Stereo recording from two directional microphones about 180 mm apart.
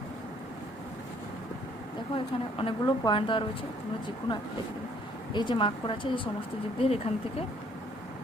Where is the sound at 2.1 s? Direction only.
30° left (ahead or behind).